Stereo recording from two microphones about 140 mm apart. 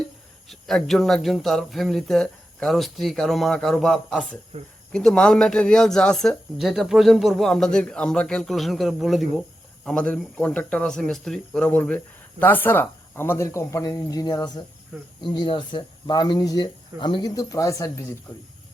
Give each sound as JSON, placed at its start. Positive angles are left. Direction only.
{"t": 0.4, "sound": "speech", "side_deg": 0}
{"t": 14.9, "sound": "speech", "side_deg": -5}
{"t": 15.3, "sound": "speech", "side_deg": 30}